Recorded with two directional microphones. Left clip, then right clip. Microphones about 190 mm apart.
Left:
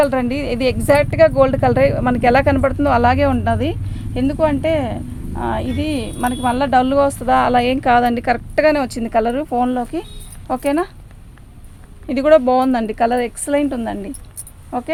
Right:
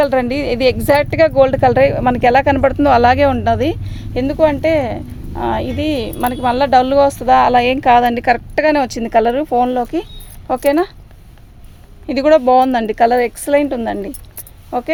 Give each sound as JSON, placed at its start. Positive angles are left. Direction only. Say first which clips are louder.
{"t": 0.0, "sound": "speech", "louder": "right 2 dB", "side_deg": -45}
{"t": 12.0, "sound": "speech", "louder": "right 1 dB", "side_deg": -35}